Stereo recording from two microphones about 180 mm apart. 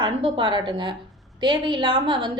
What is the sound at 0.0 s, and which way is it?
A woman's voice, 25° right (ahead or behind).